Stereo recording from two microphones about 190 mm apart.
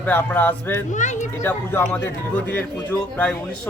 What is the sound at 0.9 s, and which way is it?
Speech, 40° left (ahead or behind).